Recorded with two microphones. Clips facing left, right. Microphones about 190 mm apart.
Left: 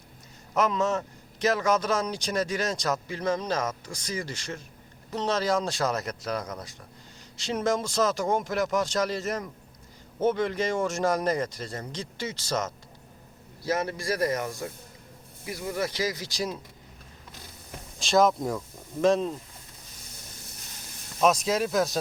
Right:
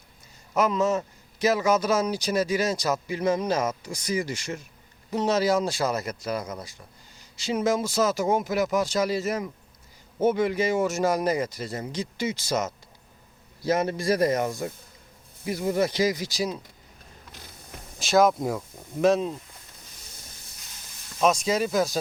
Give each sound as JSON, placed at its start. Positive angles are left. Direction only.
{"t": 0.5, "sound": "a man's voice", "side_deg": 0}
{"t": 13.7, "sound": "speech", "side_deg": -20}
{"t": 18.0, "sound": "a man's voice", "side_deg": -5}
{"t": 21.2, "sound": "a man's voice", "side_deg": 0}